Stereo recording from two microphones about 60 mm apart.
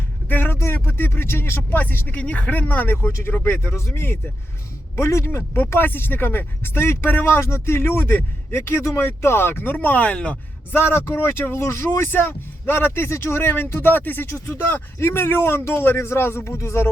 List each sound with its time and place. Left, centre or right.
0.3 s a sound: left
0.6 s speech: left
1.8 s speech: left
2.9 s speech: left
3.7 s a man's voice: left; by 10.3 s centre
10.7 s speech: left
14.3 s a man's voice: left